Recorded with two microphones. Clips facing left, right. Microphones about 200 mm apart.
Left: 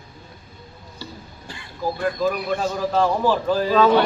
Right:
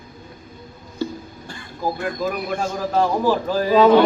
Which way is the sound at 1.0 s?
50° right (ahead or behind).